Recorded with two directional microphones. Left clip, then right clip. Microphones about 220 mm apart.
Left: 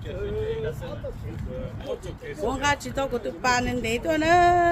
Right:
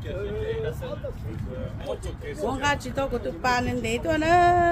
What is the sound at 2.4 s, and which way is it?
Speech, 15° left (ahead or behind).